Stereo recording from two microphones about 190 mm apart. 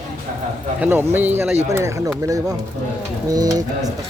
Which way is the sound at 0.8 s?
10° right (ahead or behind).